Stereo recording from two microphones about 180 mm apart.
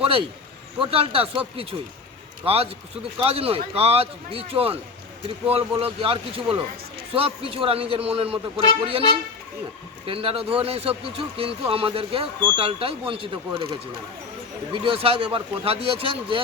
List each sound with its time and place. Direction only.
0.0 s a man's voice: 30° right (ahead or behind)
10.1 s speech: 30° right (ahead or behind)
14.7 s speech: 30° right (ahead or behind)